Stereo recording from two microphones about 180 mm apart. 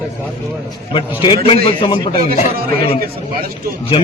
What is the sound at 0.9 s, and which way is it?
A man's voice, 30° left (ahead or behind).